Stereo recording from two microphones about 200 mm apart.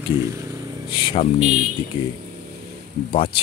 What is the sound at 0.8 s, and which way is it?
Speech, 25° left (ahead or behind).